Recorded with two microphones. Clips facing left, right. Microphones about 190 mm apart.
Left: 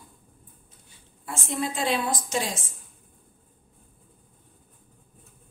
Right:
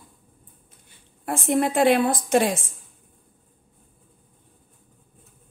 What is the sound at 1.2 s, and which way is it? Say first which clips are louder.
A woman's voice: right 8 dB; 60° right (ahead or behind).